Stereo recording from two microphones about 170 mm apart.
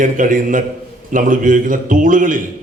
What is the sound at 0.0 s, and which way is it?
Speech, 50° right (ahead or behind).